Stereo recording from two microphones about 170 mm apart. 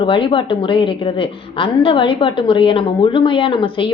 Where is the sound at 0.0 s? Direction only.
30° left (ahead or behind).